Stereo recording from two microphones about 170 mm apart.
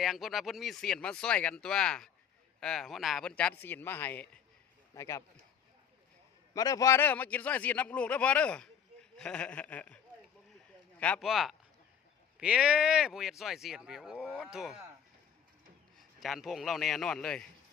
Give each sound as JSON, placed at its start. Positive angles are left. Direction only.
{"t": 0.0, "sound": "a man's voice", "side_deg": 0}
{"t": 6.5, "sound": "a man's voice", "side_deg": 20}
{"t": 11.0, "sound": "speech", "side_deg": 5}
{"t": 16.0, "sound": "speech", "side_deg": 0}